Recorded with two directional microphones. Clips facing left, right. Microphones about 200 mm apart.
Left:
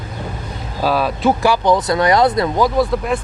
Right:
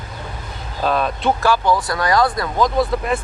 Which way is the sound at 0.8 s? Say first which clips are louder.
Left 3 dB; 5° left (ahead or behind).